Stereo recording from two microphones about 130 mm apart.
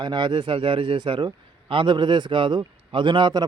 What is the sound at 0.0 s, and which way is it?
A man's voice, 35° right (ahead or behind).